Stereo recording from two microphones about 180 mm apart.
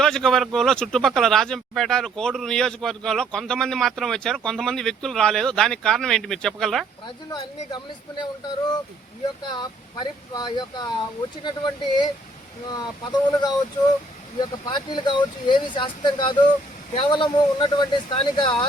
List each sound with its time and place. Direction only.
0.0 s speech: 5° left (ahead or behind)
7.3 s speech: 20° left (ahead or behind)